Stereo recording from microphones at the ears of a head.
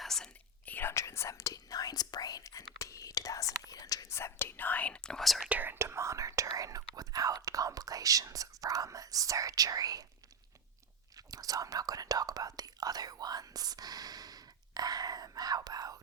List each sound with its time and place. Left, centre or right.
0.6 s speech: left
5.8 s speech: right
11.3 s speech: right